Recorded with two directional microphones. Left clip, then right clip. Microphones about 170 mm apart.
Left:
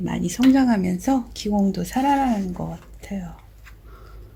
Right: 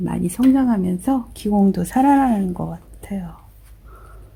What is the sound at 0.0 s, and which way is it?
Speech, 35° right (ahead or behind).